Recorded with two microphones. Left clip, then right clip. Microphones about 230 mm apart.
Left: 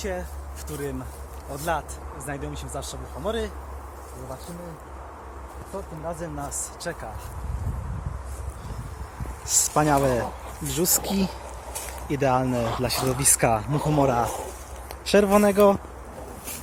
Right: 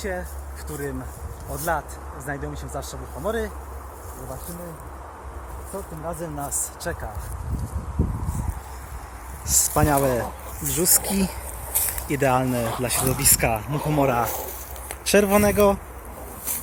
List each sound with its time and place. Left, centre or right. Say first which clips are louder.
0.0 s speech: right 1 dB; centre
1.5 s speech: right 2 dB; centre
5.7 s speech: right 1 dB; right
9.6 s speech: even; centre
13.7 s speech: even; centre